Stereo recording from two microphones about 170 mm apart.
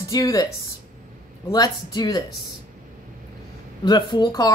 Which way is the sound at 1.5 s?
25° left (ahead or behind).